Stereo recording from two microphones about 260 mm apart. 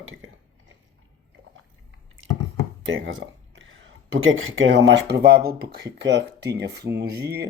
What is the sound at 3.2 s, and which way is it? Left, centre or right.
Speech, right.